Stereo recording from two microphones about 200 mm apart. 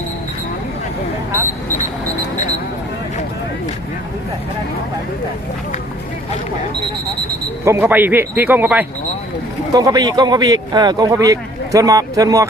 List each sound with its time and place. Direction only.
7.6 s speech: 10° right (ahead or behind)
9.7 s speech: 20° right (ahead or behind)